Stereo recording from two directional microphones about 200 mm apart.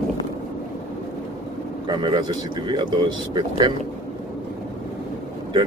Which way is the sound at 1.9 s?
20° right (ahead or behind).